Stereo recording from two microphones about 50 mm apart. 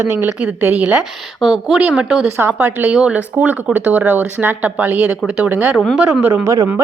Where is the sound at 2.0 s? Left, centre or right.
Centre; by 5.0 s right.